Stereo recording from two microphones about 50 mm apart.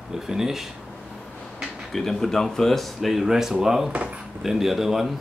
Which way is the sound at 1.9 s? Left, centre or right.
Centre.